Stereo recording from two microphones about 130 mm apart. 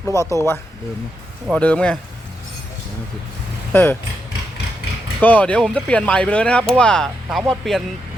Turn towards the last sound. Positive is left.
turn(degrees=0)  # may be behind; listen again after turning